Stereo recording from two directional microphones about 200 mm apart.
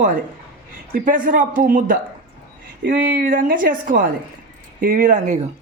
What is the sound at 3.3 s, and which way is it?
A man's voice, 45° right (ahead or behind).